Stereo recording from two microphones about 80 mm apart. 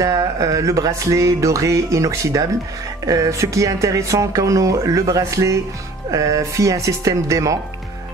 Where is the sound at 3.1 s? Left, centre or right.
Right.